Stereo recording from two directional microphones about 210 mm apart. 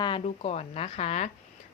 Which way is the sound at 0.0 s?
25° left (ahead or behind).